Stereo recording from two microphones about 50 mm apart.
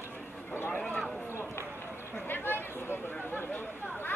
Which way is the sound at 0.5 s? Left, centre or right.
Left.